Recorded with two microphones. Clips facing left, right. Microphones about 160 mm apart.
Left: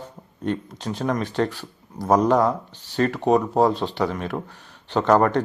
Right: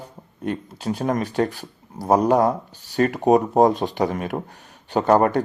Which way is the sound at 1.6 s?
10° right (ahead or behind).